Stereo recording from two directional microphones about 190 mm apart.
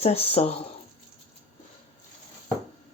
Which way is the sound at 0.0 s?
30° left (ahead or behind).